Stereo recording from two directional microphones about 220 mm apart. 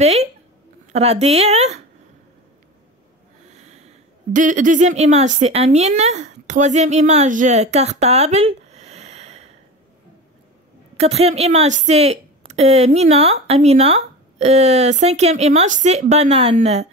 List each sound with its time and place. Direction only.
0.0 s a woman's voice: 30° right (ahead or behind)
3.5 s speech: 30° right (ahead or behind)
11.0 s a woman's voice: 30° right (ahead or behind)